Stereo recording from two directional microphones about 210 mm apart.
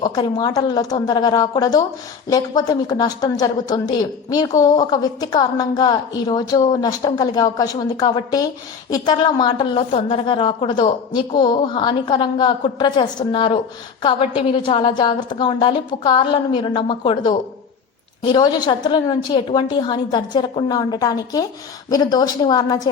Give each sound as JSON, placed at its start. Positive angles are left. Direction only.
{"t": 0.0, "sound": "a woman's voice", "side_deg": 20}